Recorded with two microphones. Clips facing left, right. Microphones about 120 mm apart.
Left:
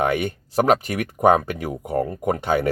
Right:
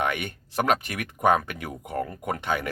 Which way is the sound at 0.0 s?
35° left (ahead or behind).